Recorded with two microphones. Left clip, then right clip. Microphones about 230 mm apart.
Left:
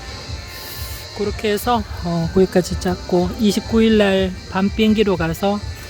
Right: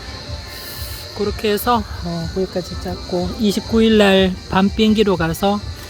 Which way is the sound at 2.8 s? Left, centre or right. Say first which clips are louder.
Left 5 dB; left.